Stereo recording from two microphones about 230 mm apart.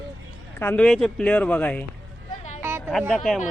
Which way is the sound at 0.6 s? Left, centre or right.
Centre.